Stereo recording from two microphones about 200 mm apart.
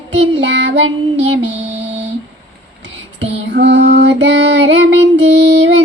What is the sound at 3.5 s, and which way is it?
Female singing, 60° right (ahead or behind).